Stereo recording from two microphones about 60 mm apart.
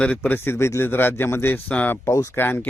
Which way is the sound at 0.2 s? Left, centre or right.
Left.